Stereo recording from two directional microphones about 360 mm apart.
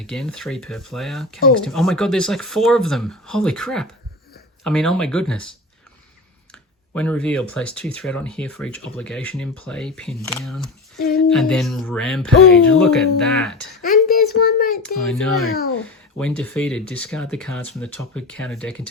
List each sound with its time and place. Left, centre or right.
0.0 s speech: centre
6.5 s speech: centre
10.9 s child singing: left
11.3 s speech: centre
13.8 s a sound: left
14.3 s child singing: left
15.0 s speech: centre